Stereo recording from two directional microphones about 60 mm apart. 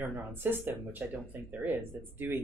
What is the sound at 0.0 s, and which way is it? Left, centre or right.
Speech, right.